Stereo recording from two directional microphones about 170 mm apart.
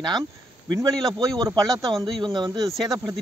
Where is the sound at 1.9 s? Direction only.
Centre (ahead or behind).